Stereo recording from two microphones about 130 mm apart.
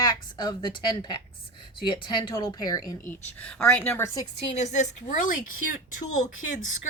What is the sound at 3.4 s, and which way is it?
Speech, 10° left (ahead or behind).